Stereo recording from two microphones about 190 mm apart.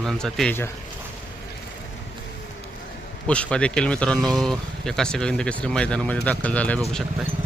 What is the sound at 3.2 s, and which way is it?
Speech, 5° left (ahead or behind).